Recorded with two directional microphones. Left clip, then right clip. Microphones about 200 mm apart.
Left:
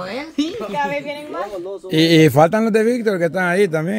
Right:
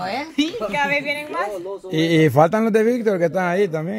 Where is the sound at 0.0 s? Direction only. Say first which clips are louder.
Right 1 dB; 25° right (ahead or behind).